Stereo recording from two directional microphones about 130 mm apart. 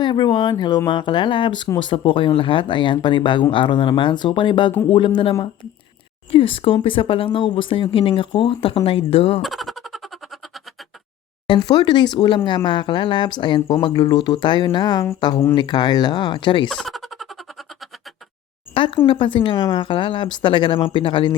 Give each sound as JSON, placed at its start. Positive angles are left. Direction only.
{"t": 0.0, "sound": "speech", "side_deg": 35}
{"t": 6.3, "sound": "speech", "side_deg": 45}
{"t": 9.4, "sound": "a sound", "side_deg": 0}
{"t": 11.4, "sound": "speech", "side_deg": 35}
{"t": 16.6, "sound": "a sound", "side_deg": 5}
{"t": 18.7, "sound": "speech", "side_deg": 45}